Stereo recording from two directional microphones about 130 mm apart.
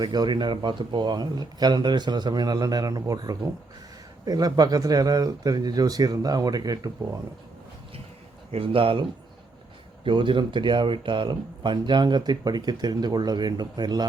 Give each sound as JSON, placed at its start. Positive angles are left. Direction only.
{"t": 0.0, "sound": "speech", "side_deg": -30}
{"t": 8.5, "sound": "speech", "side_deg": -45}